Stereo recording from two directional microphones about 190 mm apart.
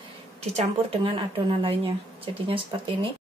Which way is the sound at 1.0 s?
25° right (ahead or behind).